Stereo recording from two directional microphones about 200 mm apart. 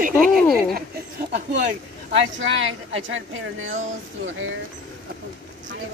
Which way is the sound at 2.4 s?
70° right (ahead or behind).